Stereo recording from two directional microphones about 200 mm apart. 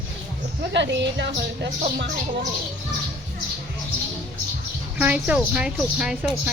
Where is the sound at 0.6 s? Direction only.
60° right (ahead or behind).